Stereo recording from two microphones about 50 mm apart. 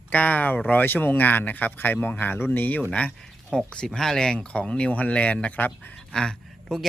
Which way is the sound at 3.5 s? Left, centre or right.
Centre.